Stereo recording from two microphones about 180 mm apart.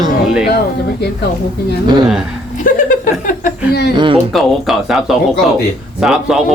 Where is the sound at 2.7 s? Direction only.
45° left (ahead or behind).